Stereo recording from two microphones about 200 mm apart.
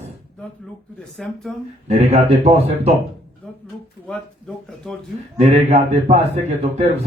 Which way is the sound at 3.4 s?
5° left (ahead or behind).